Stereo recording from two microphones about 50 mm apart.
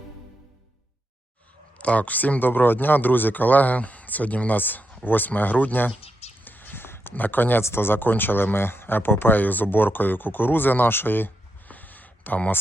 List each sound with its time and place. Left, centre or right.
1.8 s speech: left
6.4 s whispering: left
7.1 s speech: left
7.6 s speech: left
11.7 s a sound: left